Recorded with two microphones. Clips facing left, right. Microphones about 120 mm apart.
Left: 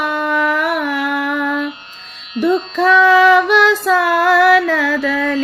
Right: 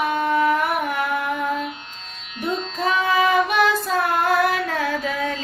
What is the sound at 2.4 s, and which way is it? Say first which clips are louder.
Child singing: left 10 dB; 80° left.